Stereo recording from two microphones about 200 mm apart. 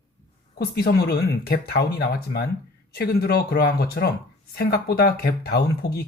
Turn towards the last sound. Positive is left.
turn(degrees=50)  # may be behind; listen again after turning